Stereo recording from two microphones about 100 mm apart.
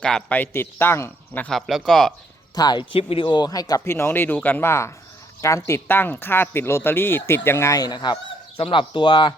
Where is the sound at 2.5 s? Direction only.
45° left (ahead or behind).